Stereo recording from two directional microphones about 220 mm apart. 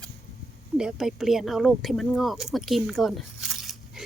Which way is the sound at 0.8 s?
Centre (ahead or behind).